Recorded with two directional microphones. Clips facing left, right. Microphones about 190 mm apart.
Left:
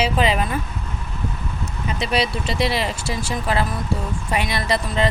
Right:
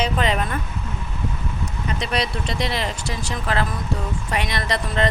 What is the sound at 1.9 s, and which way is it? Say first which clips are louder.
Speech: left 3 dB; 5° left (ahead or behind).